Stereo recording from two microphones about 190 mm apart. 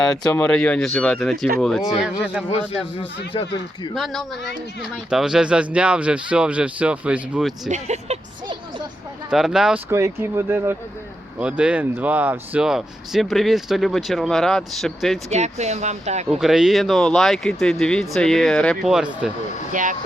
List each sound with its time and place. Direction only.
0.0 s speech: 5° left (ahead or behind)
3.3 s speech: 25° left (ahead or behind)
3.9 s speech: centre (ahead or behind)
7.7 s speech: 35° right (ahead or behind)
9.3 s speech: 5° right (ahead or behind)
9.9 s speech: 15° right (ahead or behind)
15.3 s speech: 35° right (ahead or behind)
16.4 s speech: centre (ahead or behind)
19.7 s speech: 45° right (ahead or behind)